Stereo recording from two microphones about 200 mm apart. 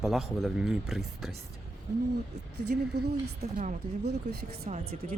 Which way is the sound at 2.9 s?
55° right (ahead or behind).